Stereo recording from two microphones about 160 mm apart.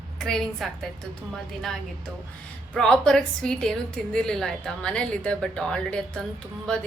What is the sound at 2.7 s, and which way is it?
A woman's voice, 5° left (ahead or behind).